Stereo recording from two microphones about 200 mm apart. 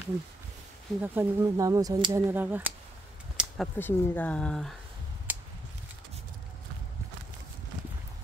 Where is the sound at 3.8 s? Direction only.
10° left (ahead or behind).